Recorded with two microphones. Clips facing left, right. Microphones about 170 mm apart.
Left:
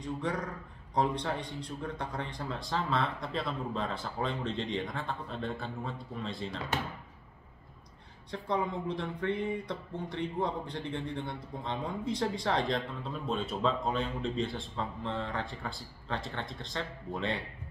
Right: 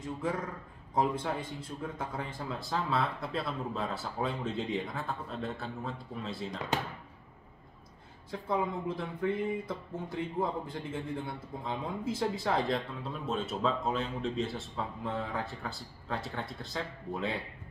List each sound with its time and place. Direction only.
0.0 s speech: 5° right (ahead or behind)
8.3 s speech: 5° right (ahead or behind)